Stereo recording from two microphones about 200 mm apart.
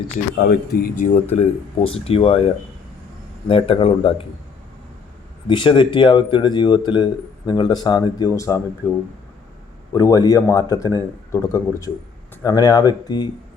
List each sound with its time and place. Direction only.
0.3 s speech: 55° left (ahead or behind); by 2.4 s 30° left (ahead or behind)
3.5 s speech: 25° left (ahead or behind)
5.5 s speech: 25° left (ahead or behind)